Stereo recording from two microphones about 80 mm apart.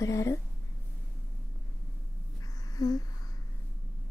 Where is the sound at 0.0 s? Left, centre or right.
Left.